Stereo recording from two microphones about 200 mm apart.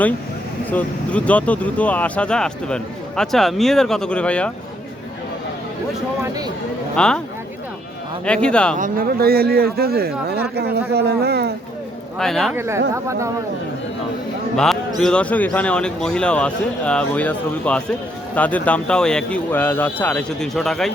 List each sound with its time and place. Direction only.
0.7 s speech: 5° left (ahead or behind)
6.2 s speech: 20° right (ahead or behind)
6.9 s speech: 5° left (ahead or behind)
8.2 s speech: 5° left (ahead or behind)
8.8 s speech: 45° right (ahead or behind)
12.2 s speech: centre (ahead or behind)
12.5 s speech: 15° right (ahead or behind)
14.5 s speech: centre (ahead or behind)